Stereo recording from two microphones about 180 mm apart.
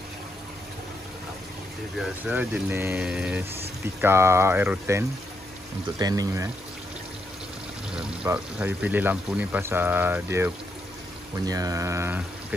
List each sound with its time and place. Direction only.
2.0 s speech: 5° right (ahead or behind)
7.9 s speech: 5° right (ahead or behind)